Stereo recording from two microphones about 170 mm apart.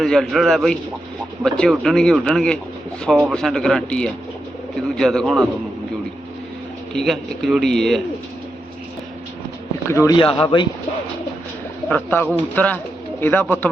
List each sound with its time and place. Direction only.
0.0 s speech: centre (ahead or behind)
6.9 s speech: centre (ahead or behind)
9.9 s speech: 20° left (ahead or behind)
10.2 s a man's voice: 30° left (ahead or behind)
11.9 s speech: 10° left (ahead or behind)